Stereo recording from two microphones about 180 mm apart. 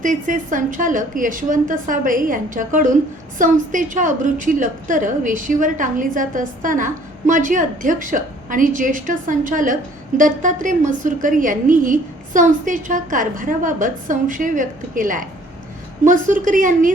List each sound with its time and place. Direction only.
0.0 s a woman's voice: 45° right (ahead or behind)